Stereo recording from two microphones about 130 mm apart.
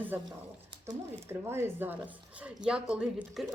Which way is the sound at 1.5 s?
20° right (ahead or behind).